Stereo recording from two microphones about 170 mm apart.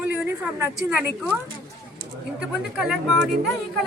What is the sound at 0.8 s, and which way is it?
Speech, 5° right (ahead or behind).